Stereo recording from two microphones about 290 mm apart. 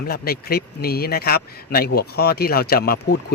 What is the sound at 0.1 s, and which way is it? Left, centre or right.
Speech, left.